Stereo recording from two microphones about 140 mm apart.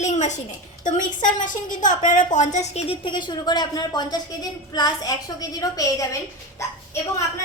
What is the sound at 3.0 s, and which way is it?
A woman's voice, 35° left (ahead or behind).